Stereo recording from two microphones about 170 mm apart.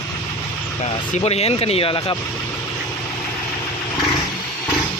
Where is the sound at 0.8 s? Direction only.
40° left (ahead or behind).